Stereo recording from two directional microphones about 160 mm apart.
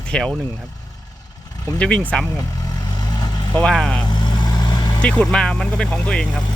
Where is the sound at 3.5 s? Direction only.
5° left (ahead or behind).